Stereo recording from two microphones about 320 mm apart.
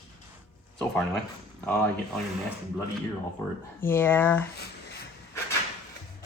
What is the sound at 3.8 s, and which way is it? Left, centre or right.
Speech, centre.